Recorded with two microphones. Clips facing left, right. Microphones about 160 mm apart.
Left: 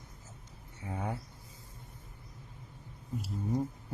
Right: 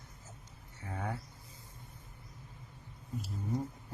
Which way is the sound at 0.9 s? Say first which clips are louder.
Left 2 dB; 15° left (ahead or behind).